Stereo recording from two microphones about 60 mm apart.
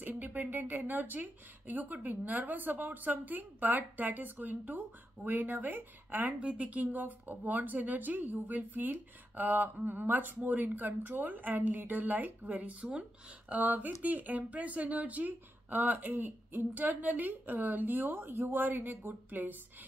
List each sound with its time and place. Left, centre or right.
0.2 s speech: right